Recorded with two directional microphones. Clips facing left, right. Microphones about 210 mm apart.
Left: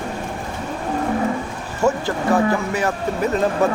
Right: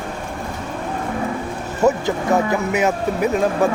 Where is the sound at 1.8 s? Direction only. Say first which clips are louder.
Right 2 dB; 20° right (ahead or behind).